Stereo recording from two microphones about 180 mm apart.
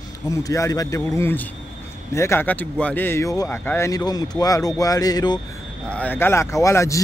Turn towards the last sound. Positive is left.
turn(degrees=15)  # may be behind; listen again after turning